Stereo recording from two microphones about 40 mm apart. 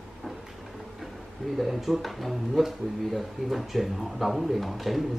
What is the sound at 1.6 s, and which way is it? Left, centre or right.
Speech, centre.